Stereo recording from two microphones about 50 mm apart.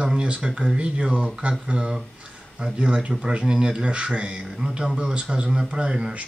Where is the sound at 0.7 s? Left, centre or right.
Right.